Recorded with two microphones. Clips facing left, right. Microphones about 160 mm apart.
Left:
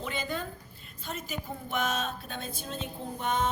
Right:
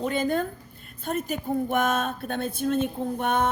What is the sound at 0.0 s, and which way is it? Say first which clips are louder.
A woman's voice: right 9 dB; 50° right (ahead or behind).